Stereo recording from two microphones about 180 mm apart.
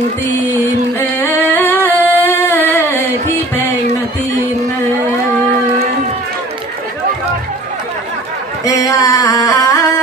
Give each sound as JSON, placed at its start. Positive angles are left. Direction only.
{"t": 0.9, "sound": "singing", "side_deg": 15}
{"t": 8.6, "sound": "music", "side_deg": 20}